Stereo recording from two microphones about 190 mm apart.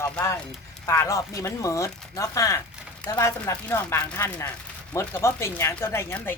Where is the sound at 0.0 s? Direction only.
15° left (ahead or behind).